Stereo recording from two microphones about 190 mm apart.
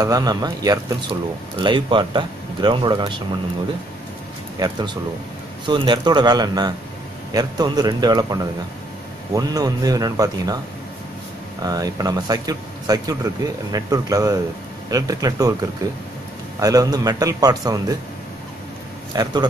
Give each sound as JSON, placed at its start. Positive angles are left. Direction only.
{"t": 0.0, "sound": "speech", "side_deg": -20}
{"t": 4.6, "sound": "speech", "side_deg": -20}
{"t": 11.6, "sound": "speech", "side_deg": -20}
{"t": 16.5, "sound": "speech", "side_deg": -20}
{"t": 19.1, "sound": "speech", "side_deg": -20}